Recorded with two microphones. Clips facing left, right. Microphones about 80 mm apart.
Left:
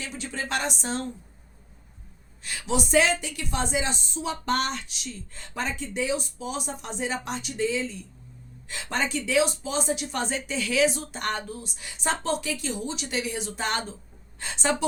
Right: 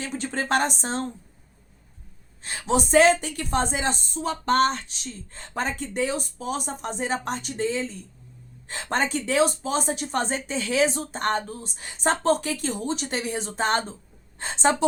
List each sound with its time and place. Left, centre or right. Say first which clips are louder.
0.0 s a woman's voice: right 5 dB; right
2.4 s a woman's voice: right 4 dB; right